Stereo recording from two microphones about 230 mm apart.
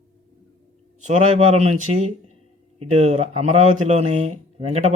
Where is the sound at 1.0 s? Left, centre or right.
Right.